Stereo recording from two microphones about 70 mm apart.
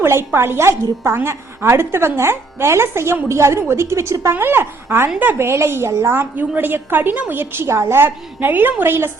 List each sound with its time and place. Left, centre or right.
0.0 s a woman's voice: right
7.3 s a woman's voice: right